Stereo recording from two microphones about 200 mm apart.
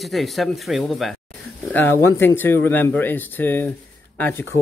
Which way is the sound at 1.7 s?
10° left (ahead or behind).